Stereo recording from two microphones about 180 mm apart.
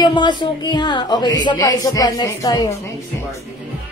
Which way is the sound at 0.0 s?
25° left (ahead or behind).